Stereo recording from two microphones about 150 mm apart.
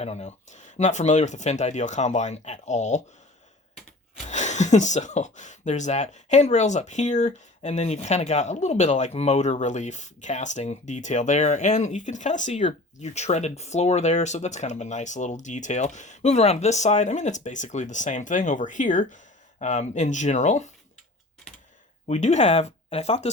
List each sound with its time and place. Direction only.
0.0 s speech: 45° left (ahead or behind)
4.3 s speech: 50° left (ahead or behind)
22.0 s speech: 50° left (ahead or behind)